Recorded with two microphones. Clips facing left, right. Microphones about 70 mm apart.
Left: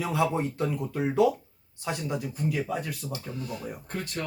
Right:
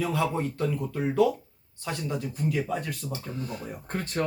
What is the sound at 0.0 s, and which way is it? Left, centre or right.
Speech, centre.